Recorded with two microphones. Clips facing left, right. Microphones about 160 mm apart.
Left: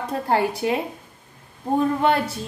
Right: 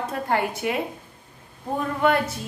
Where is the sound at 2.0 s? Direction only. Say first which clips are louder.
Left 1 dB; 30° left (ahead or behind).